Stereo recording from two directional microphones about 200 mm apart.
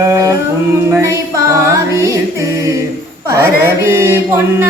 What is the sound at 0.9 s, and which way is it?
Music, 15° right (ahead or behind).